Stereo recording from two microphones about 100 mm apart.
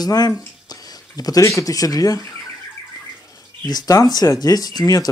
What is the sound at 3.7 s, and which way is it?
Speech, 40° left (ahead or behind).